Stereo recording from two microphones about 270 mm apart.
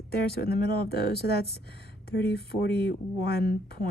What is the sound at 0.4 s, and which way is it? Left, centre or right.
Speech, left.